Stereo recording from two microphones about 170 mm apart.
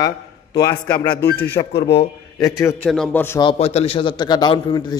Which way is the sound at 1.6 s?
30° left (ahead or behind).